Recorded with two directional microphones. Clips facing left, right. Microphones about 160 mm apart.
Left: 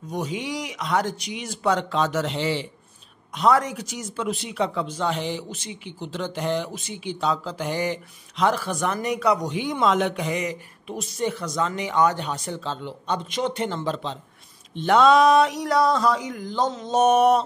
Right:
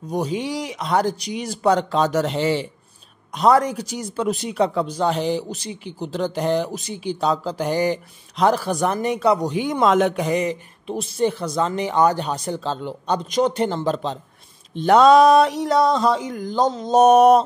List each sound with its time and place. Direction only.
0.1 s speech: 35° right (ahead or behind)
9.6 s speech: 45° right (ahead or behind); by 16.3 s 25° right (ahead or behind)
16.3 s speech: 40° right (ahead or behind)